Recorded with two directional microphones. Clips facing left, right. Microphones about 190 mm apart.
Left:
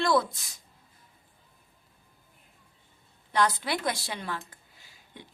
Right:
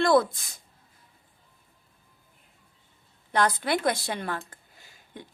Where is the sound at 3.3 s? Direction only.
55° right (ahead or behind).